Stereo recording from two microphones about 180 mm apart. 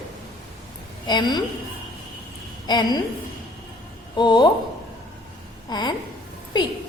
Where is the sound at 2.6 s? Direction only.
25° left (ahead or behind).